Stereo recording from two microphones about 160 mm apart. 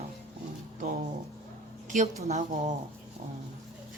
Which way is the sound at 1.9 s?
45° right (ahead or behind).